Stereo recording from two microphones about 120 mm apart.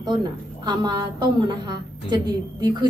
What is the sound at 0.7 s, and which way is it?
A woman's voice, 40° right (ahead or behind).